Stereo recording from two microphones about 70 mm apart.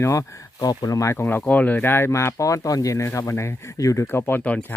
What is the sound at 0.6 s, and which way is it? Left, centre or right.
Speech, left.